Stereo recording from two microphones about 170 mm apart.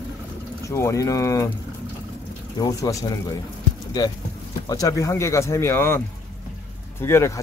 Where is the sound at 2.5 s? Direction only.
20° left (ahead or behind).